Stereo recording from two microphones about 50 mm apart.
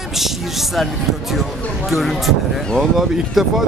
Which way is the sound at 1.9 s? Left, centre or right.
Centre.